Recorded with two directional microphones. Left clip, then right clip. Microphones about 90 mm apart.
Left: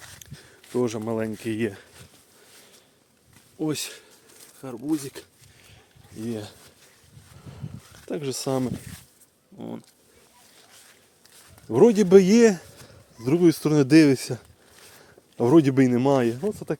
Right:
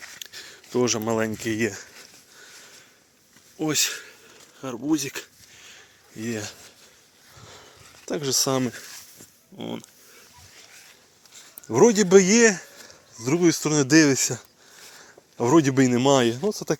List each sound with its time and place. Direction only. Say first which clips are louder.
0.2 s a sound: right 8 dB; 10° left (ahead or behind)
0.8 s speech: right 3 dB; centre (ahead or behind)
1.5 s speech: right 2 dB; 20° left (ahead or behind)
3.6 s speech: right 5 dB; 10° left (ahead or behind)
4.9 s speech: right 3 dB; 5° right (ahead or behind)
5.6 s a sound: right 6 dB; 15° left (ahead or behind)
6.2 s speech: right 2 dB; 5° left (ahead or behind)
7.3 s a sound: right 1 dB; centre (ahead or behind)
9.6 s speech: right 3 dB; 5° right (ahead or behind)
11.7 s speech: even; 45° left (ahead or behind); by 12.6 s 90° left
13.1 s speech: left 1 dB; 70° left (ahead or behind)
14.9 s a sound: left 1 dB; 75° left (ahead or behind)
15.9 s speech: right 2 dB; 10° left (ahead or behind)
16.2 s speech: right 2 dB; 5° right (ahead or behind)